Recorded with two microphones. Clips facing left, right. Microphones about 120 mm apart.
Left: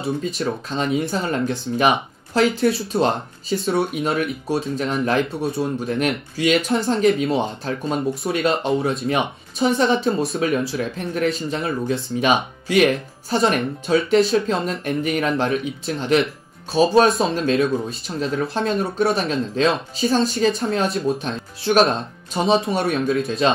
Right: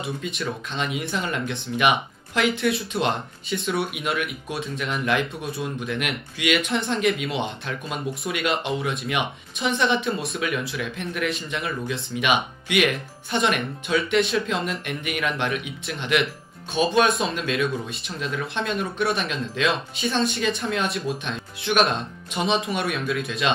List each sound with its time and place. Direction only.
0.0 s speech: 35° left (ahead or behind)